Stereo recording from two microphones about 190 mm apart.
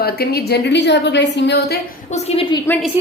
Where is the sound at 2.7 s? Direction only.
10° left (ahead or behind).